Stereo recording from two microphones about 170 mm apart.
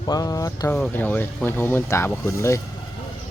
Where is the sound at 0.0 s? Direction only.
25° left (ahead or behind).